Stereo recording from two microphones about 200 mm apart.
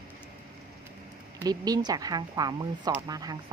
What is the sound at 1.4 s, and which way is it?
Speech, 20° right (ahead or behind).